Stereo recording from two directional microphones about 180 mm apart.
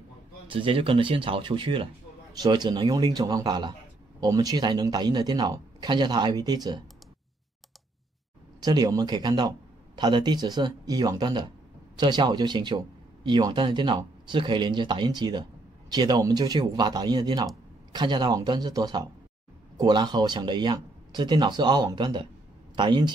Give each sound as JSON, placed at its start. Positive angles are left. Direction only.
{"t": 0.5, "sound": "speech", "side_deg": -30}
{"t": 8.5, "sound": "speech", "side_deg": -20}